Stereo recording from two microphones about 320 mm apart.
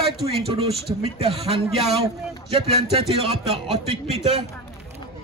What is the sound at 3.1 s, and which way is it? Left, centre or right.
Speech, centre.